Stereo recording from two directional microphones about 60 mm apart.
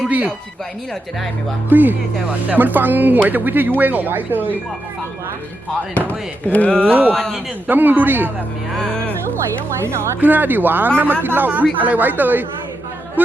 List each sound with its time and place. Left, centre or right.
0.1 s speech: right
1.7 s speech: right
5.9 s speech: left
6.8 s speech: right
8.7 s speech: centre
10.2 s speech: right